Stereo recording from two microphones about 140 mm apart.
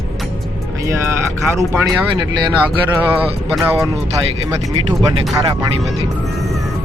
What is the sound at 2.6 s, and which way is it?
Speech, 15° right (ahead or behind).